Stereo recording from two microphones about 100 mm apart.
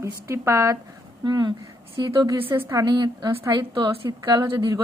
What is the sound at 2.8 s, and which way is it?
A woman's voice, 50° right (ahead or behind).